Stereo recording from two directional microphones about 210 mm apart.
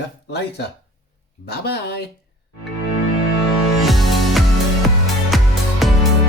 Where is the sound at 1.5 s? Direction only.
50° left (ahead or behind).